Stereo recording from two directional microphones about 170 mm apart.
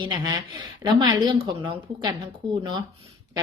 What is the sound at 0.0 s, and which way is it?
A woman's voice, 30° right (ahead or behind).